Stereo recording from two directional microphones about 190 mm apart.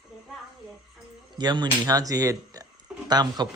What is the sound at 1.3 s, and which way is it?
Speech, 25° right (ahead or behind).